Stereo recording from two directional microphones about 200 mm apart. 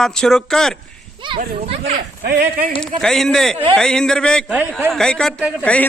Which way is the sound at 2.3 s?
50° right (ahead or behind).